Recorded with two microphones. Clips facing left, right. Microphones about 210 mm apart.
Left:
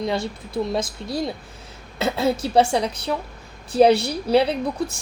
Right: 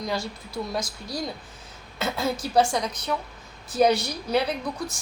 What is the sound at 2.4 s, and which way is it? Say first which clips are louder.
A woman's voice: left 2 dB; 30° left (ahead or behind).